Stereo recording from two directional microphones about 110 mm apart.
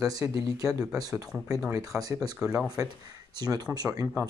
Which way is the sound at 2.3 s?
5° right (ahead or behind).